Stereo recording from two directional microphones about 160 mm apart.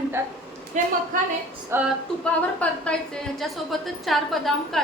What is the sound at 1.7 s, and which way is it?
Speech, 15° right (ahead or behind).